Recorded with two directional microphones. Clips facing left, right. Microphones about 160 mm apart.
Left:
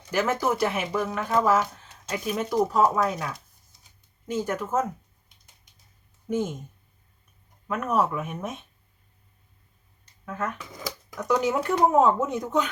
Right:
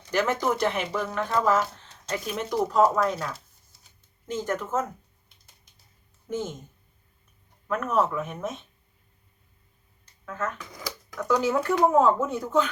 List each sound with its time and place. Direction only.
0.1 s speech: 5° left (ahead or behind)
6.3 s speech: 10° left (ahead or behind)
7.7 s speech: 10° left (ahead or behind)
10.2 s speech: 15° left (ahead or behind)